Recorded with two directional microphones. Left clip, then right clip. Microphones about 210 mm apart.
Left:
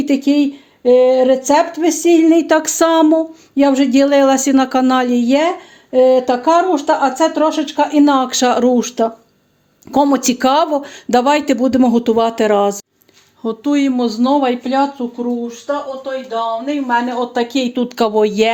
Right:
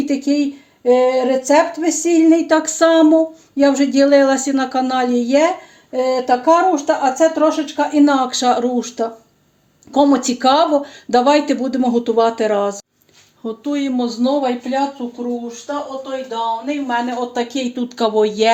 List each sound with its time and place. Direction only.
0.0 s speech: 50° left (ahead or behind)
16.9 s speech: 35° left (ahead or behind)